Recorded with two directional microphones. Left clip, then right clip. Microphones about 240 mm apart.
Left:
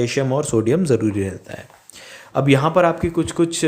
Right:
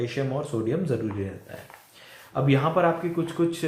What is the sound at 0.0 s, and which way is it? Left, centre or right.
Speech, left.